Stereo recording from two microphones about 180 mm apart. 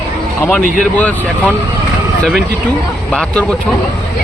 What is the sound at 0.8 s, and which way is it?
Speech, 5° left (ahead or behind).